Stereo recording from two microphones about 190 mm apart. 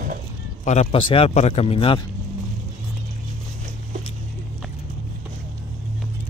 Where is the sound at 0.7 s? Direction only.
30° left (ahead or behind).